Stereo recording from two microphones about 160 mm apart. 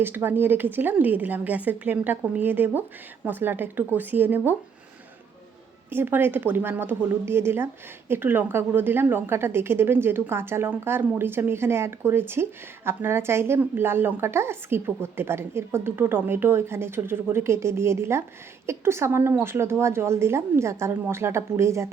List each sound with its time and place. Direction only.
0.0 s speech: 15° right (ahead or behind)
5.9 s speech: 15° right (ahead or behind)